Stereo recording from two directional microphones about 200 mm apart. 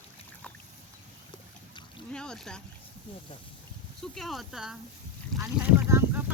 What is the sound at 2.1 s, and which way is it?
Speech, 5° left (ahead or behind).